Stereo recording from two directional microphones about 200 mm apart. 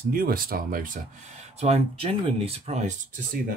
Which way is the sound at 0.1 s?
45° right (ahead or behind).